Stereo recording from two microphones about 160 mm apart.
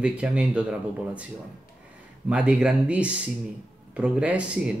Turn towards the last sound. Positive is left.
turn(degrees=-5)  # may be behind; listen again after turning